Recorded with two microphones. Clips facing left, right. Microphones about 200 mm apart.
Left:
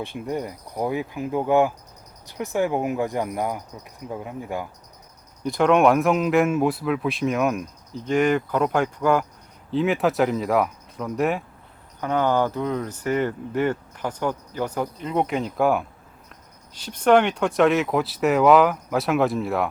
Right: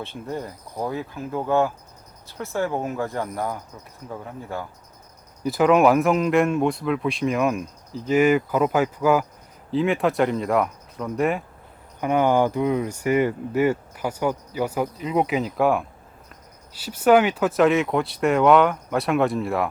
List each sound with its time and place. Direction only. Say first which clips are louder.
0.0 s speech: left 3 dB; 15° left (ahead or behind)
5.4 s speech: right 1 dB; 5° right (ahead or behind)
11.9 s speech: right 2 dB; 15° right (ahead or behind)